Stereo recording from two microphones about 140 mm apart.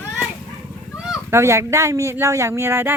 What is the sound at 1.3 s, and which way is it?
Speech, 20° right (ahead or behind).